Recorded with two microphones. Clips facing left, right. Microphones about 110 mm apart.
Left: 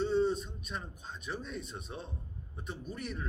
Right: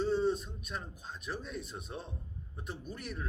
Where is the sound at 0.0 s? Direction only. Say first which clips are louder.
Left 1 dB; centre (ahead or behind).